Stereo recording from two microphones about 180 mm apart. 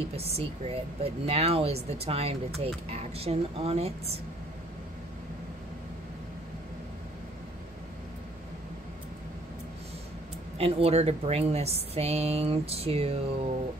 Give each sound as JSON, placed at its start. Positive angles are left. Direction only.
{"t": 0.1, "sound": "speech", "side_deg": -35}
{"t": 10.6, "sound": "speech", "side_deg": -35}